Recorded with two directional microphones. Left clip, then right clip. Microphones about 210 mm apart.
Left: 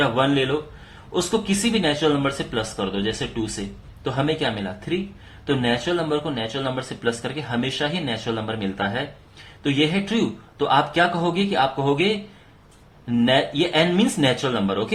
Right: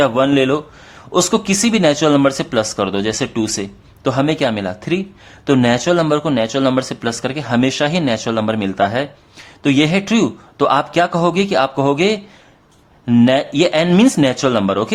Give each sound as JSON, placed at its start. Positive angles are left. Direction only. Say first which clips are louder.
{"t": 0.0, "sound": "a man's voice", "louder": "right 6 dB", "side_deg": -45}